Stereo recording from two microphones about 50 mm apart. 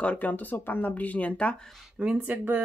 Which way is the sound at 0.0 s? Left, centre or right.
Left.